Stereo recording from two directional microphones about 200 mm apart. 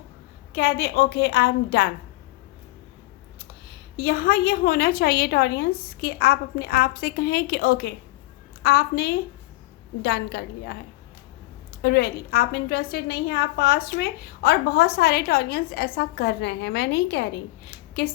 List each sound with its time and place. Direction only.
0.5 s a woman's voice: 50° left (ahead or behind)
3.9 s a woman's voice: 50° left (ahead or behind)
11.8 s a woman's voice: 55° left (ahead or behind)